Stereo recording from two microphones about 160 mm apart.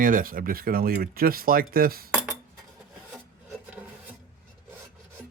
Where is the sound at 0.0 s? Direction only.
60° right (ahead or behind).